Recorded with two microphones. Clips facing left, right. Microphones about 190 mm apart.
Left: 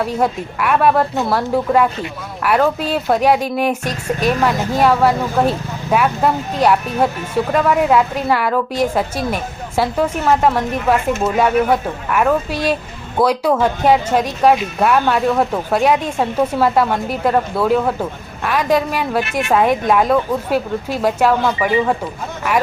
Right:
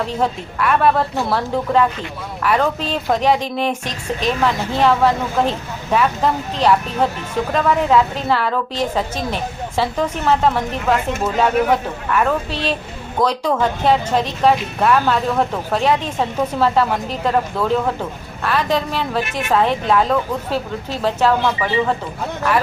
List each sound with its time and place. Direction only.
0.0 s speech: 10° left (ahead or behind)